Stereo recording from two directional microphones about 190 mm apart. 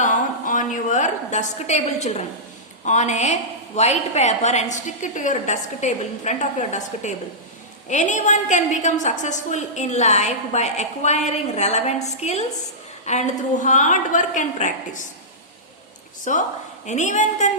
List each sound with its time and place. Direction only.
0.0 s a sound: 45° left (ahead or behind)
2.8 s a woman's voice: 40° left (ahead or behind)
16.3 s a woman's voice: 40° left (ahead or behind)